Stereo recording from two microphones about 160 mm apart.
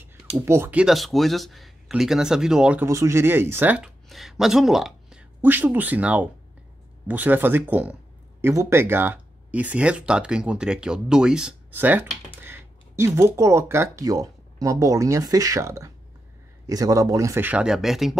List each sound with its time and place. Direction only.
0.5 s speech: 10° right (ahead or behind)
2.9 s speech: 20° right (ahead or behind); by 18.1 s centre (ahead or behind)